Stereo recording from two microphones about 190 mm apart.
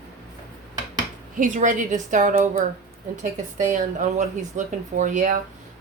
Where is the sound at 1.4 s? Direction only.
40° right (ahead or behind).